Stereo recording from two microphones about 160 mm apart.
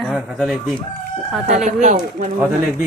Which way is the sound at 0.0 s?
Centre (ahead or behind).